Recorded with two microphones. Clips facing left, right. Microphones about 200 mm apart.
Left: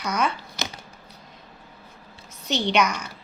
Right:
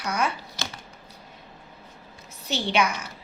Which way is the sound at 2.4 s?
5° right (ahead or behind).